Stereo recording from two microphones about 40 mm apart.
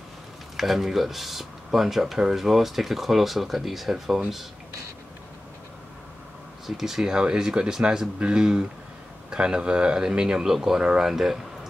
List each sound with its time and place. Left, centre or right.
0.6 s speech: centre
6.6 s speech: centre